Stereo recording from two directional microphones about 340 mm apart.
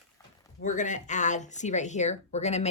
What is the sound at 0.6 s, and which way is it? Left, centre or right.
Speech, left.